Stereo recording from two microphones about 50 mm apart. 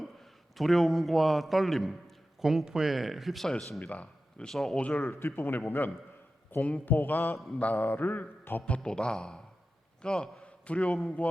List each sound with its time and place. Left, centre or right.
0.5 s a man's voice: centre
2.4 s a man's voice: centre
3.4 s a man's voice: centre
3.8 s speech: left
4.4 s a man's voice: centre
4.8 s speech: left
5.0 s a man's voice: left
8.6 s a man's voice: centre
10.4 s a sound: left
11.2 s speech: left